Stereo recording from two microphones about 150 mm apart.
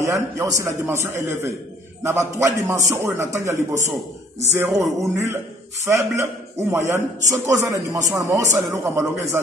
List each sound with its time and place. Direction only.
0.0 s a man's voice: 20° right (ahead or behind)